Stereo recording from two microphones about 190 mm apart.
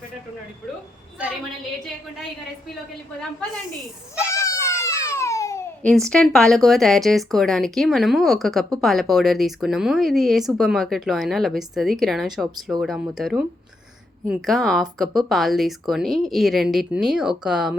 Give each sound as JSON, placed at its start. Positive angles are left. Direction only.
{"t": 4.4, "sound": "baby cry", "side_deg": 15}
{"t": 5.9, "sound": "speech", "side_deg": 5}